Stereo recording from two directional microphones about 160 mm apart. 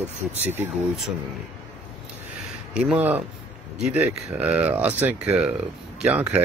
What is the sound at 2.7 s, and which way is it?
Speech, 10° right (ahead or behind).